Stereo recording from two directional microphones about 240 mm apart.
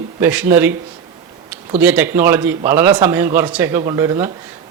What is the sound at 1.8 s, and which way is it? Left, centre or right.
A man's voice, centre.